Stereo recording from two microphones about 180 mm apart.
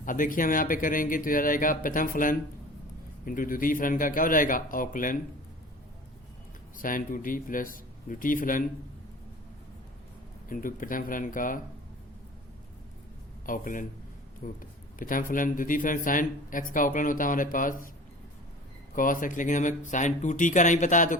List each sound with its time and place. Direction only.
0.0 s speech: 50° left (ahead or behind)
6.7 s speech: 50° left (ahead or behind)
10.5 s speech: 50° left (ahead or behind)
13.4 s speech: 50° left (ahead or behind)
18.9 s speech: 50° left (ahead or behind)